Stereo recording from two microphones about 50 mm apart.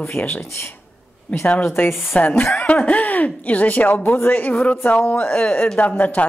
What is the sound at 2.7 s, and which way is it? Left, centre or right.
Speech, left.